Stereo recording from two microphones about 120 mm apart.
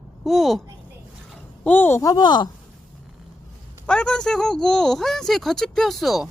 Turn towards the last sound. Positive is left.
turn(degrees=0)  # may be behind; listen again after turning